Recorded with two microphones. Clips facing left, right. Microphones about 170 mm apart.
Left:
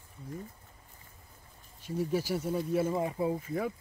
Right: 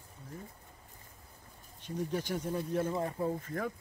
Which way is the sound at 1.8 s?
5° left (ahead or behind).